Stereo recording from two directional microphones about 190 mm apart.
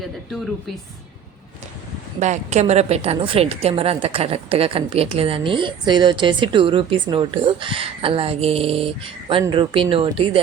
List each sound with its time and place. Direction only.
2.1 s a woman's voice: 40° right (ahead or behind)